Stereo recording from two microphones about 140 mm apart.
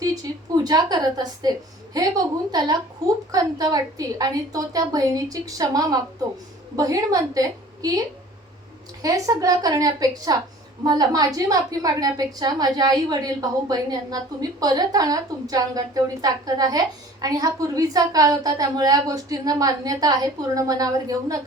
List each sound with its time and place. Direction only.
0.0 s a woman's voice: 25° right (ahead or behind)